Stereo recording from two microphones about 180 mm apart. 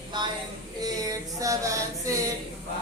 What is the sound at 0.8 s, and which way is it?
A woman's voice, 20° right (ahead or behind).